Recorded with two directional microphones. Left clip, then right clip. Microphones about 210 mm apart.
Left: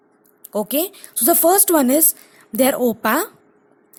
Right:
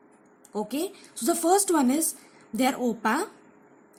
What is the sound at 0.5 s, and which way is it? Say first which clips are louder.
A woman's voice: left 9 dB; 40° left (ahead or behind).